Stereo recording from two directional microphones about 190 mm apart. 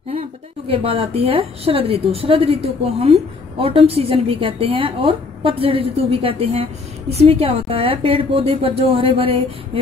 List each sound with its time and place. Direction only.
0.1 s a woman's voice: 30° right (ahead or behind)